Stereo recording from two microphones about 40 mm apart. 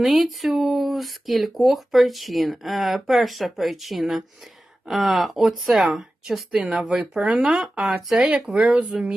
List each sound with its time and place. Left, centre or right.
0.0 s speech: centre
6.6 s speech: right
6.8 s speech: centre
7.1 s speech: right